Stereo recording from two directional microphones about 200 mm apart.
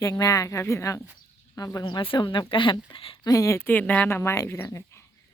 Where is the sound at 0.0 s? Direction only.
15° left (ahead or behind).